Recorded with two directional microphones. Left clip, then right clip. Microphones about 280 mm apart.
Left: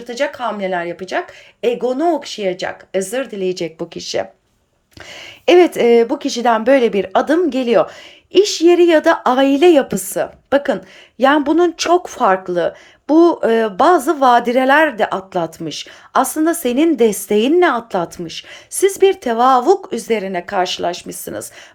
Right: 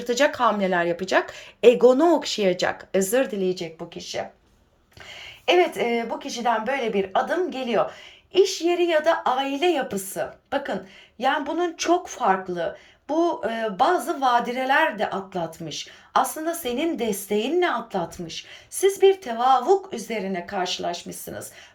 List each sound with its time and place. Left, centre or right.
0.1 s a woman's voice: centre